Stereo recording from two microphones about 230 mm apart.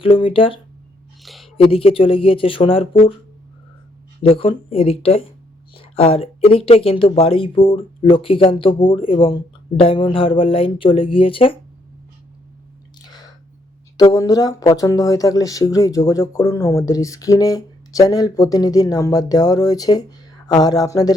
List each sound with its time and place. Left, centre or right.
0.0 s speech: left
1.2 s a sound: centre
1.6 s speech: left
4.2 s speech: left
13.0 s chewing: centre
13.9 s speech: centre